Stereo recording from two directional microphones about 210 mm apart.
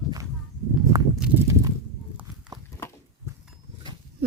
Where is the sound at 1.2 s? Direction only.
10° right (ahead or behind).